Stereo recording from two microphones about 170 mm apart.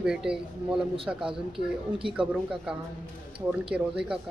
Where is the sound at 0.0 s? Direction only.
5° right (ahead or behind).